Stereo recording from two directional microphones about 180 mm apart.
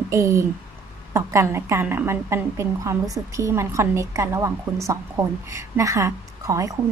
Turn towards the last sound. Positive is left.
turn(degrees=-20)  # may be behind; listen again after turning